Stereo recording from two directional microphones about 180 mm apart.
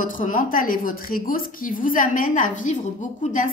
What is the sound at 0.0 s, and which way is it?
A woman's voice, 45° left (ahead or behind).